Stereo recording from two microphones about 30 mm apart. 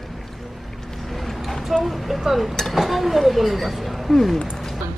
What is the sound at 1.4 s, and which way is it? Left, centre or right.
Vehicle, centre.